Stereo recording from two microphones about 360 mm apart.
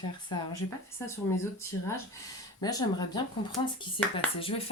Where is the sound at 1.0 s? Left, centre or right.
Centre.